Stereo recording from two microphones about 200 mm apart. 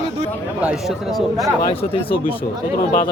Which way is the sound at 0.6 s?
5° right (ahead or behind).